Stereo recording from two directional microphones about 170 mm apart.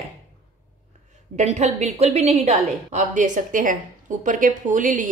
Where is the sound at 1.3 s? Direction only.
45° right (ahead or behind).